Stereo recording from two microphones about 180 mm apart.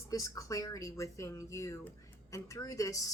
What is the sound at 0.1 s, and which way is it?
A woman's voice, 20° left (ahead or behind).